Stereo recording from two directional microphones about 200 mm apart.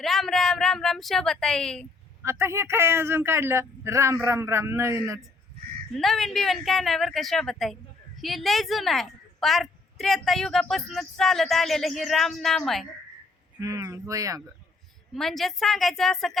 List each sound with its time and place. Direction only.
0.0 s a woman's voice: centre (ahead or behind)
2.2 s speech: 15° right (ahead or behind)
6.0 s a woman's voice: centre (ahead or behind)
13.6 s speech: 15° right (ahead or behind)
15.1 s a woman's voice: centre (ahead or behind)